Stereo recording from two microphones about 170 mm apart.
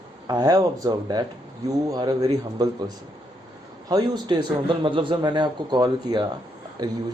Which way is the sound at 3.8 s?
25° right (ahead or behind).